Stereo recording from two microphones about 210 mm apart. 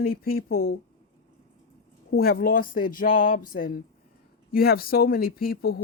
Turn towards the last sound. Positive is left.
turn(degrees=45)  # may be behind; listen again after turning